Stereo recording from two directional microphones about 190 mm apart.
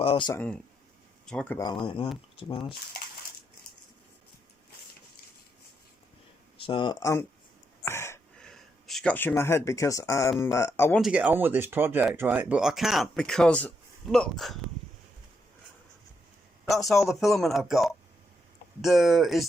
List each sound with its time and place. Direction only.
0.0 s speech: 30° left (ahead or behind)
0.3 s speech: 10° left (ahead or behind)
1.5 s speech: 25° left (ahead or behind)
6.6 s speech: 25° left (ahead or behind)
7.9 s gasp: 15° left (ahead or behind)
8.4 s speech: centre (ahead or behind)
11.0 s speech: 5° right (ahead or behind)
17.2 s speech: centre (ahead or behind)